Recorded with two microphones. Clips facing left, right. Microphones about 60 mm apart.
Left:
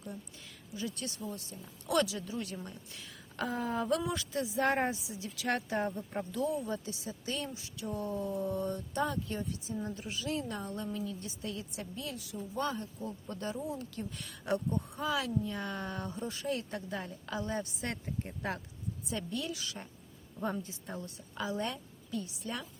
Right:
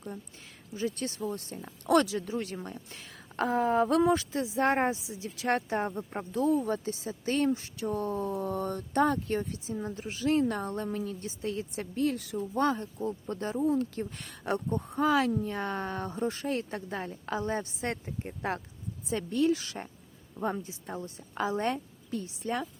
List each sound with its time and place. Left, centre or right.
0.7 s speech: right
1.3 s speech: right
4.3 s speech: right
6.1 s speech: right
6.4 s speech: right
9.6 s speech: right
10.0 s speech: right
12.4 s speech: right
16.1 s speech: right
19.0 s speech: right
20.4 s speech: right
21.3 s speech: right